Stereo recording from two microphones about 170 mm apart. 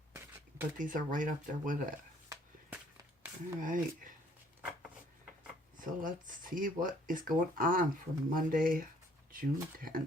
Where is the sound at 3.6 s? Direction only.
50° right (ahead or behind).